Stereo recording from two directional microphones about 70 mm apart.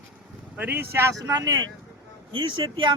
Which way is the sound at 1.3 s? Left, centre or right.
Right.